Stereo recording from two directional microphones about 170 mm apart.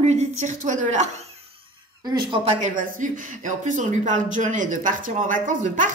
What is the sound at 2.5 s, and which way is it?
Speech, 45° right (ahead or behind).